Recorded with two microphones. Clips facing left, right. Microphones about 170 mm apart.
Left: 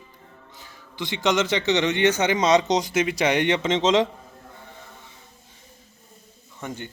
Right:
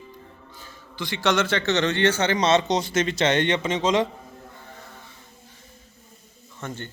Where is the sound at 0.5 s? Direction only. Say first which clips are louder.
Even; 20° left (ahead or behind).